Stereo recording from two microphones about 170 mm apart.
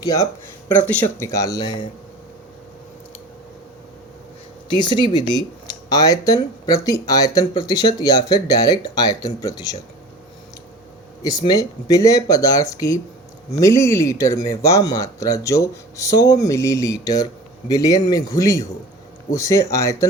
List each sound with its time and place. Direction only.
0.0 s speech: 20° left (ahead or behind)
0.7 s speech: 10° left (ahead or behind); by 1.9 s 25° left (ahead or behind)
4.7 s speech: 25° left (ahead or behind)
11.2 s speech: 20° left (ahead or behind)